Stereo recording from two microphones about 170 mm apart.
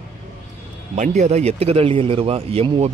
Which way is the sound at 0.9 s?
45° right (ahead or behind).